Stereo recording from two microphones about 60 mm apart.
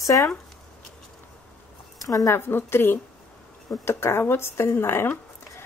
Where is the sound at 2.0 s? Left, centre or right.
Left.